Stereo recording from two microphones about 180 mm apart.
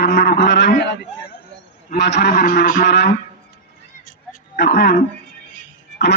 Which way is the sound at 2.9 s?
70° left (ahead or behind).